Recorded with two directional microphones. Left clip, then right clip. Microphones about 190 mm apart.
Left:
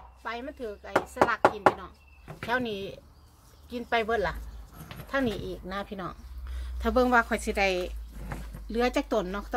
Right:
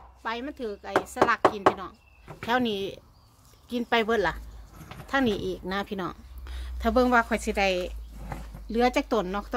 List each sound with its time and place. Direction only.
0.2 s speech: 50° right (ahead or behind)
6.8 s speech: 15° right (ahead or behind)